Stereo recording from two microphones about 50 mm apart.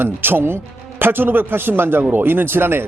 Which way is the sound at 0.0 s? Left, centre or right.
Right.